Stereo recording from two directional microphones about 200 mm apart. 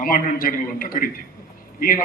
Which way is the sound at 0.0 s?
45° left (ahead or behind).